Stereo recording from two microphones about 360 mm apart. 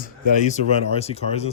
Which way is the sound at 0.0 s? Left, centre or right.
Left.